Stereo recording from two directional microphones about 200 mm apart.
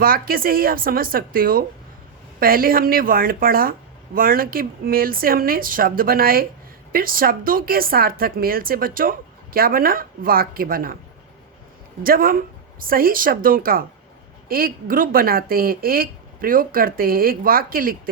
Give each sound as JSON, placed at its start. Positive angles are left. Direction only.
{"t": 0.0, "sound": "speech", "side_deg": -45}
{"t": 12.0, "sound": "speech", "side_deg": -45}